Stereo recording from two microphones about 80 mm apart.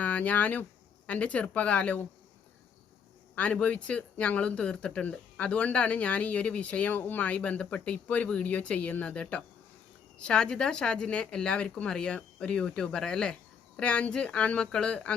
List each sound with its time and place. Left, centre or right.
0.0 s speech: centre
3.3 s speech: centre